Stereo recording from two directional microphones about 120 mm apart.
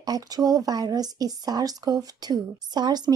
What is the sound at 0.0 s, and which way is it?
Speech, 30° right (ahead or behind).